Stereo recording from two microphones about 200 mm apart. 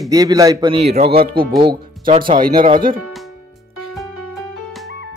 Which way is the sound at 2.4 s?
45° right (ahead or behind).